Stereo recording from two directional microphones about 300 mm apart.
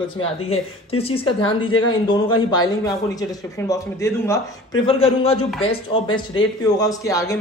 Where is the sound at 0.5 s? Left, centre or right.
Centre.